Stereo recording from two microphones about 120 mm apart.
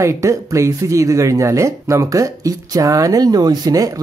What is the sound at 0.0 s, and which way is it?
Speech, 25° right (ahead or behind).